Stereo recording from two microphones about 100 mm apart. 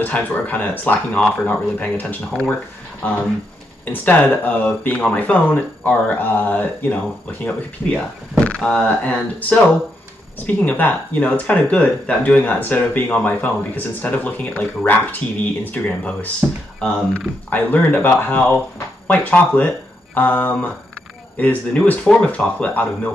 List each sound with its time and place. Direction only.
0.0 s speech: 15° left (ahead or behind)
8.5 s speech: 5° left (ahead or behind)